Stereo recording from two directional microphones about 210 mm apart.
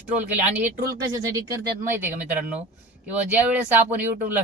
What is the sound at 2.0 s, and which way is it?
Speech, 5° right (ahead or behind).